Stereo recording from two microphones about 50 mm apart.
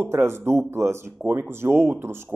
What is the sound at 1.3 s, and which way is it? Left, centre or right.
Speech, right.